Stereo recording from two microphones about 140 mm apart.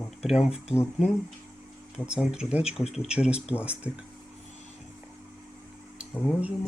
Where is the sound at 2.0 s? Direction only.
5° right (ahead or behind).